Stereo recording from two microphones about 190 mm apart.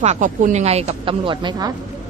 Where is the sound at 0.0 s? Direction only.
40° right (ahead or behind); by 1.7 s 20° right (ahead or behind).